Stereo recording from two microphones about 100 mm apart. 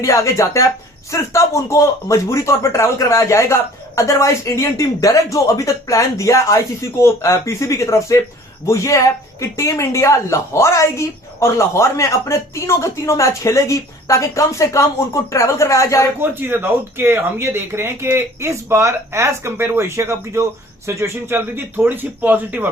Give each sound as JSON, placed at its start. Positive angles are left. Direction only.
{"t": 0.0, "sound": "speech", "side_deg": 30}
{"t": 16.2, "sound": "speech", "side_deg": -20}